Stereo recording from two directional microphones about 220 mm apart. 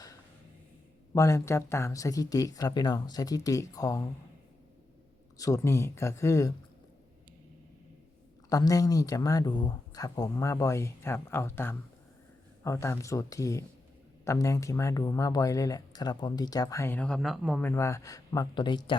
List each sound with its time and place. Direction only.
1.1 s speech: 15° left (ahead or behind)
5.4 s speech: 15° left (ahead or behind)
8.4 s speech: 15° left (ahead or behind)